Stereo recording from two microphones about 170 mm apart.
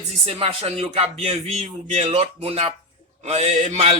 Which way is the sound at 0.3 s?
35° right (ahead or behind).